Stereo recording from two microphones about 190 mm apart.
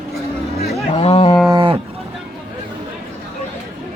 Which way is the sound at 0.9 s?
30° left (ahead or behind).